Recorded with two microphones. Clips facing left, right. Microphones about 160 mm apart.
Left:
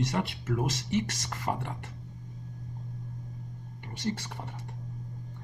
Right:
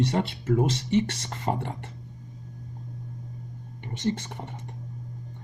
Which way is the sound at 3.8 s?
20° right (ahead or behind).